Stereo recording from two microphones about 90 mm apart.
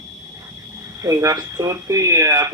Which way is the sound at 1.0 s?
40° right (ahead or behind).